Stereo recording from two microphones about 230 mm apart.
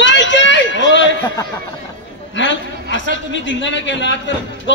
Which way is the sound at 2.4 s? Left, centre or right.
Left.